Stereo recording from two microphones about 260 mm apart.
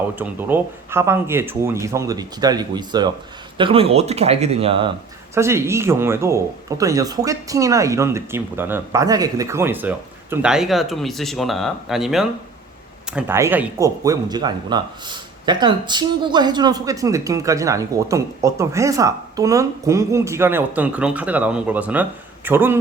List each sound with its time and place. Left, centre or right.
0.2 s speech: centre
5.3 s speech: centre